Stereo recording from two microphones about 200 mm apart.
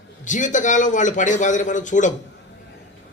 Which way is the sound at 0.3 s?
40° left (ahead or behind).